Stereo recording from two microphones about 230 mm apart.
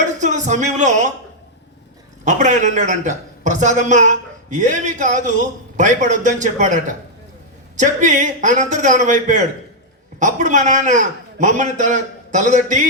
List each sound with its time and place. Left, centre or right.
0.2 s a woman's voice: right
2.2 s a woman's voice: right